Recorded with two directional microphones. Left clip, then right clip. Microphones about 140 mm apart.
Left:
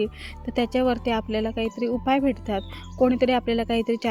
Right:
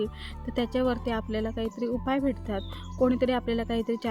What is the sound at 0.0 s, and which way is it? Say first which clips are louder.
Speech: left 5 dB; 25° left (ahead or behind).